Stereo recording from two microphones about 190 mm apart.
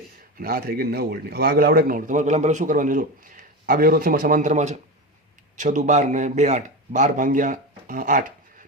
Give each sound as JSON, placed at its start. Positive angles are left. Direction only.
{"t": 0.3, "sound": "a man's voice", "side_deg": -50}